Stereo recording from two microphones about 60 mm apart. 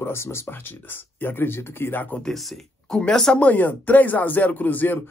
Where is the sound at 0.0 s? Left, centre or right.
Left.